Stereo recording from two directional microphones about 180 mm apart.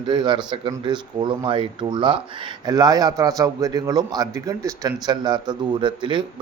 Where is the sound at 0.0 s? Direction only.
25° right (ahead or behind).